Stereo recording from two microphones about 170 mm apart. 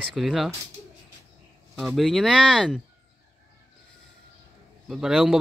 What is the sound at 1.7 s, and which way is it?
A man's voice, centre (ahead or behind).